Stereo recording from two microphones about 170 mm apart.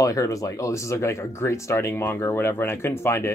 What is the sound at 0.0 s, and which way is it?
Speech, 20° left (ahead or behind).